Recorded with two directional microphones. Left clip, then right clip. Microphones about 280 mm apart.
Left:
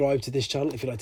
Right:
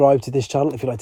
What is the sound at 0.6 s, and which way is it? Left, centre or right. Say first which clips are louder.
Speech: right 8 dB; centre.